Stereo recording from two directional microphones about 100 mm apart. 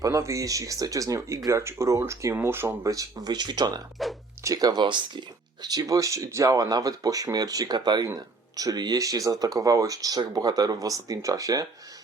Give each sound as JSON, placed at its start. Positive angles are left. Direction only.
{"t": 0.0, "sound": "speech", "side_deg": -30}
{"t": 4.0, "sound": "music", "side_deg": 0}
{"t": 4.4, "sound": "speech", "side_deg": -40}
{"t": 5.6, "sound": "speech", "side_deg": -40}